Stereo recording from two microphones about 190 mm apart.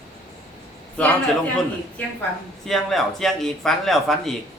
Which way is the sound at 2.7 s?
Centre (ahead or behind).